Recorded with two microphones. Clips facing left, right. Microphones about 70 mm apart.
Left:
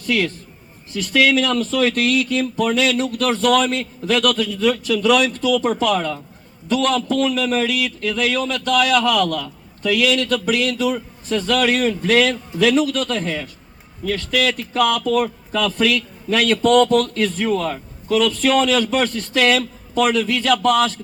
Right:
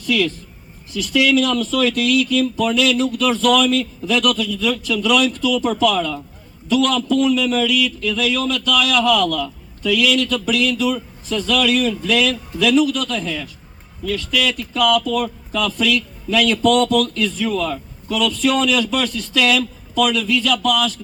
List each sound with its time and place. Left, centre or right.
0.0 s a man's voice: left